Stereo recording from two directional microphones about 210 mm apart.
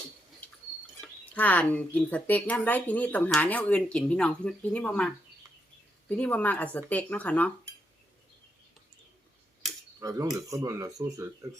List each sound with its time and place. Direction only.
1.4 s speech: 5° left (ahead or behind)
10.0 s speech: 15° right (ahead or behind)